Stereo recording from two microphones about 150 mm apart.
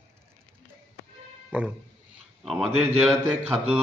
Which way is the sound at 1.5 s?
10° right (ahead or behind).